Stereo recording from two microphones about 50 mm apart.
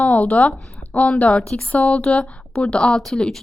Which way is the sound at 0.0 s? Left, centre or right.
Left.